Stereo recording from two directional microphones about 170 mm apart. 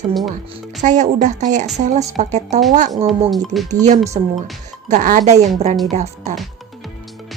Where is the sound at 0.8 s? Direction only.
45° right (ahead or behind).